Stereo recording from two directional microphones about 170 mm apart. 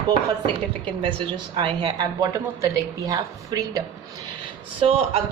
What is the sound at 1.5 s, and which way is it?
A woman's voice, 30° right (ahead or behind).